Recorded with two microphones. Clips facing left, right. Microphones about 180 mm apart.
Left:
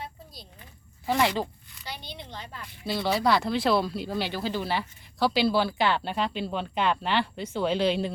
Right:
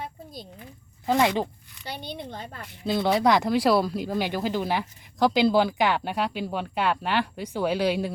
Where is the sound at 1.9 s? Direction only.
50° right (ahead or behind).